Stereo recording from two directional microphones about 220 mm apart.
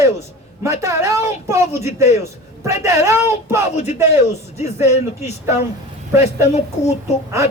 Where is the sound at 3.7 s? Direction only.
30° left (ahead or behind).